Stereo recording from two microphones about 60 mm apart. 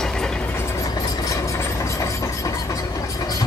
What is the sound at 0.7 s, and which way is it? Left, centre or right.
Train, left.